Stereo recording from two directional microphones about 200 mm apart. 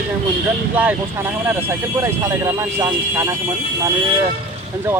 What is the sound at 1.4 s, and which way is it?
Speech, 15° right (ahead or behind).